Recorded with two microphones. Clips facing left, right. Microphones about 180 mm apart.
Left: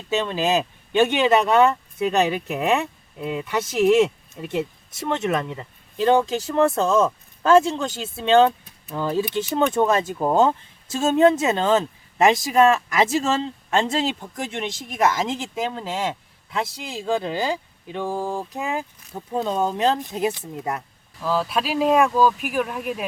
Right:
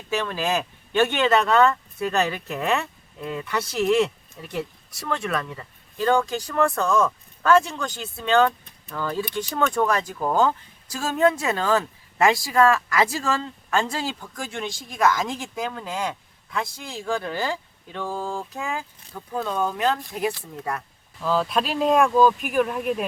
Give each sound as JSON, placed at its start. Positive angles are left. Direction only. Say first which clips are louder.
{"t": 0.1, "sound": "speech", "louder": "left 3 dB", "side_deg": 20}
{"t": 21.2, "sound": "speech", "louder": "even", "side_deg": 5}